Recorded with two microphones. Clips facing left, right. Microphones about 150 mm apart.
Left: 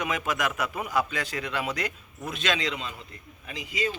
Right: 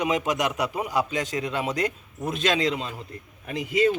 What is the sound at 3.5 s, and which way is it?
Speech, 55° right (ahead or behind).